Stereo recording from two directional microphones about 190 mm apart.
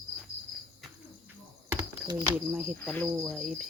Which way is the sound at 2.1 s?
5° right (ahead or behind).